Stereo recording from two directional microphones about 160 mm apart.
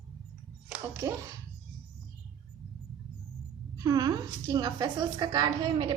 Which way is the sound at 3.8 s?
25° right (ahead or behind).